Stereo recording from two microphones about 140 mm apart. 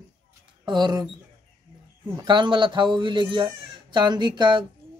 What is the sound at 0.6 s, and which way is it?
Speech, 30° right (ahead or behind).